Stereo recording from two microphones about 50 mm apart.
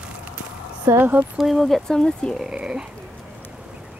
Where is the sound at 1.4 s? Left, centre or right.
Centre.